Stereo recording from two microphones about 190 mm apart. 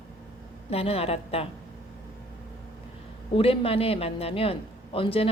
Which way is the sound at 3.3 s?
30° left (ahead or behind).